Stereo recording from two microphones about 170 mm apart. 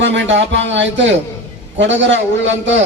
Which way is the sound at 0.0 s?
90° right.